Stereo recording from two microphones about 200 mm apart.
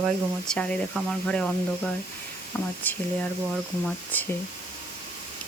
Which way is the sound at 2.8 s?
10° left (ahead or behind).